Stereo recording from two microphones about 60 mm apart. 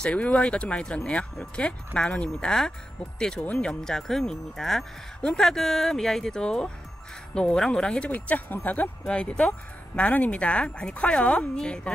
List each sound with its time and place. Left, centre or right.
0.0 s speech: left
9.0 s speech: centre